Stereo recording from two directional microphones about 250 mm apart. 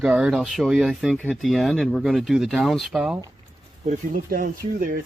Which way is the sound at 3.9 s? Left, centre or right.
Right.